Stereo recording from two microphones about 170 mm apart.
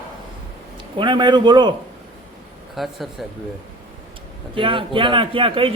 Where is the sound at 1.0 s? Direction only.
30° right (ahead or behind).